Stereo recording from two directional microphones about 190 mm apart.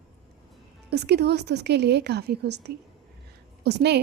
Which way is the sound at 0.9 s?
60° right (ahead or behind).